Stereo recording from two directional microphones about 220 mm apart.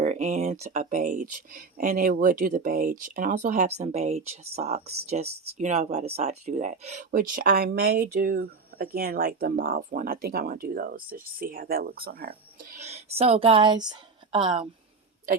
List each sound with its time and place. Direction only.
0.0 s speech: 30° right (ahead or behind)
12.7 s speech: 30° right (ahead or behind)